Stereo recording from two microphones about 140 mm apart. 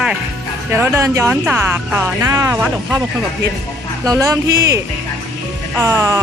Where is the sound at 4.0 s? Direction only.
25° right (ahead or behind).